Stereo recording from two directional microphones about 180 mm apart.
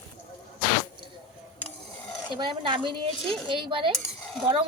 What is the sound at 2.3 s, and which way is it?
A woman's voice, 25° right (ahead or behind).